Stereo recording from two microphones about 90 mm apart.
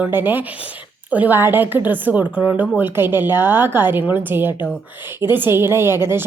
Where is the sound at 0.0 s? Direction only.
20° right (ahead or behind).